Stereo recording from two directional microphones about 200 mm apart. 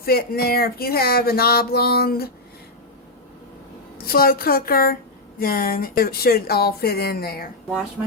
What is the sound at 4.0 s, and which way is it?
Speech, 50° left (ahead or behind).